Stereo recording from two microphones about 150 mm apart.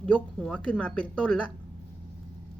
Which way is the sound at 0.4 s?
5° left (ahead or behind).